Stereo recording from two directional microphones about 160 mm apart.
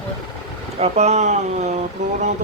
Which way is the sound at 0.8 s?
45° right (ahead or behind).